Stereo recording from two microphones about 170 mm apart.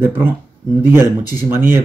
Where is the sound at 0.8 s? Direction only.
15° right (ahead or behind).